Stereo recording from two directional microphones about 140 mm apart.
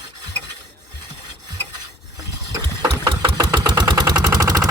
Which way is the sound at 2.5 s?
30° right (ahead or behind).